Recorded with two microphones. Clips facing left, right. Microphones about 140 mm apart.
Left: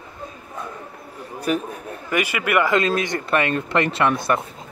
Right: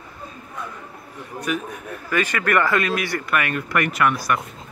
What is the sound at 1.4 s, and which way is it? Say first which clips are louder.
Speech: left 3 dB; 30° left (ahead or behind).